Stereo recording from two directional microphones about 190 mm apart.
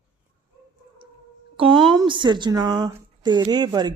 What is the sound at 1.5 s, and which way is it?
Speech, 25° right (ahead or behind).